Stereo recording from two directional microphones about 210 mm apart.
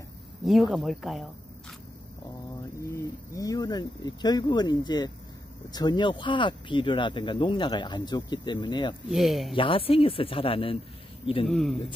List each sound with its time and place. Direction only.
0.5 s speech: centre (ahead or behind)
2.8 s speech: 15° left (ahead or behind)
9.1 s speech: centre (ahead or behind)
9.6 s speech: 25° left (ahead or behind)
11.4 s speech: centre (ahead or behind)